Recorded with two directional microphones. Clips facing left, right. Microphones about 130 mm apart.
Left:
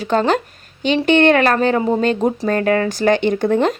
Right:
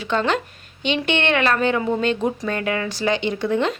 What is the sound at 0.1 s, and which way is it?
A woman's voice, 40° left (ahead or behind).